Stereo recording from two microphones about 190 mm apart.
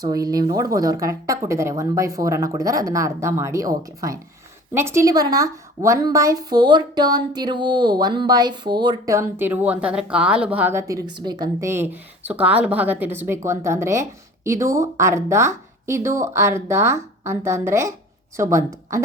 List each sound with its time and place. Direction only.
0.0 s a woman's voice: 20° right (ahead or behind)